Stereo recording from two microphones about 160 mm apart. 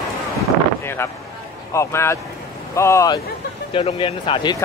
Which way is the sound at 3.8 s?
35° left (ahead or behind).